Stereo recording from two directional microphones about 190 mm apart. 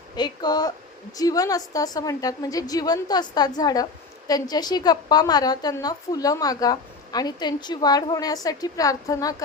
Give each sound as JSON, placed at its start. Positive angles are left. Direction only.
{"t": 0.2, "sound": "a woman's voice", "side_deg": 20}